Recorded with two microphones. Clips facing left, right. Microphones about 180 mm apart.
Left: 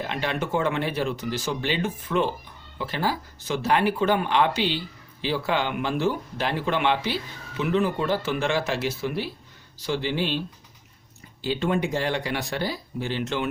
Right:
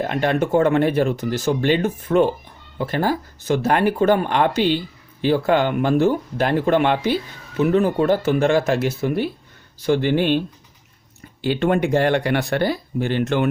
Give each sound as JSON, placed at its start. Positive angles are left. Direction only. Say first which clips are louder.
{"t": 0.0, "sound": "speech", "louder": "right 8 dB", "side_deg": -50}
{"t": 11.4, "sound": "speech", "louder": "right 6 dB", "side_deg": -60}